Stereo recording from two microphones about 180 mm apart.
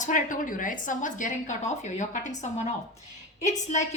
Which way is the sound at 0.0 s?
45° left (ahead or behind).